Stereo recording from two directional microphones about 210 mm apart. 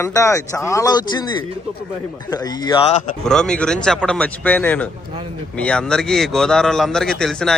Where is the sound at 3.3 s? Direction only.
5° left (ahead or behind).